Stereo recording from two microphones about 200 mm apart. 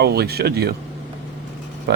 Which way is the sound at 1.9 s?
55° right (ahead or behind).